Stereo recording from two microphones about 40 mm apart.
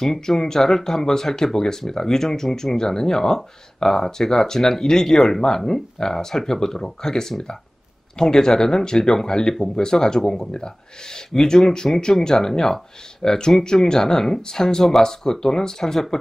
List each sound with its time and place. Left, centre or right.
0.0 s speech: centre